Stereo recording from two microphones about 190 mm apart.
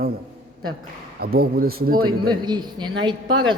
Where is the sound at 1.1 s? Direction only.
55° right (ahead or behind).